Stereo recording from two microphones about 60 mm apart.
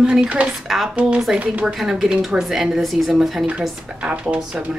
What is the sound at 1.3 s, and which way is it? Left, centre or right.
Speech, right.